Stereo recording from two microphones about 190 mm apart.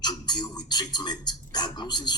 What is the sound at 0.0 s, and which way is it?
Speech, 20° left (ahead or behind).